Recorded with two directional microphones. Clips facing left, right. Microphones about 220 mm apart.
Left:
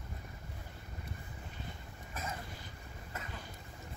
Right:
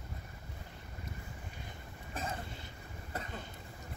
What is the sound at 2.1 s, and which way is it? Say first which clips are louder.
Cough: right 3 dB; 30° right (ahead or behind).